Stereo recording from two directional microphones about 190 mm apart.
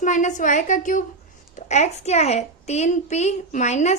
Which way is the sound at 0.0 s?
40° left (ahead or behind).